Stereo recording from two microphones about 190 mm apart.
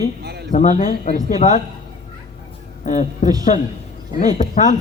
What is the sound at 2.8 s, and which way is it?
Speech, 40° left (ahead or behind).